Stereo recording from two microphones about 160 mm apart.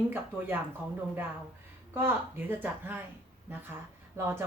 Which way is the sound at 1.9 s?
15° right (ahead or behind).